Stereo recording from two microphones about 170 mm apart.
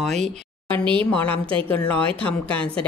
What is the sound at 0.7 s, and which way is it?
Speech, 30° right (ahead or behind).